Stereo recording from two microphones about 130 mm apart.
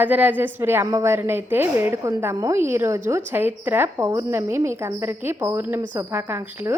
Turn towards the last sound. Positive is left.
turn(degrees=-20)  # may be behind; listen again after turning